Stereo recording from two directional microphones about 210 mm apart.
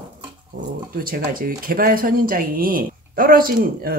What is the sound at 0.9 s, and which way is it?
Speech, 40° right (ahead or behind).